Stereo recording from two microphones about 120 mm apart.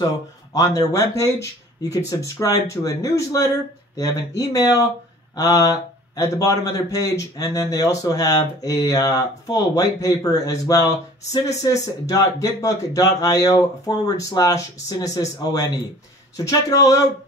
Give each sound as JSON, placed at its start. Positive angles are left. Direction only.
{"t": 0.0, "sound": "speech", "side_deg": 30}